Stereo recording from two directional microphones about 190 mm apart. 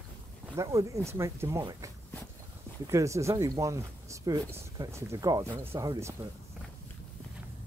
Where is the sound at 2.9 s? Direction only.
15° right (ahead or behind).